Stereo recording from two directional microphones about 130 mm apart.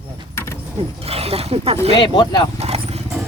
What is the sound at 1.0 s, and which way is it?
Dog, 50° right (ahead or behind).